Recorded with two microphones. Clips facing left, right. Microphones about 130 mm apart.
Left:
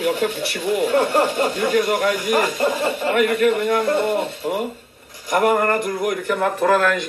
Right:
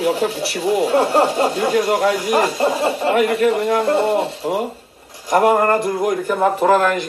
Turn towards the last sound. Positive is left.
turn(degrees=-15)  # may be behind; listen again after turning